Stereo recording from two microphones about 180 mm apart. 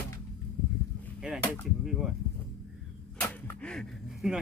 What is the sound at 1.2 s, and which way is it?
Speech, 5° right (ahead or behind).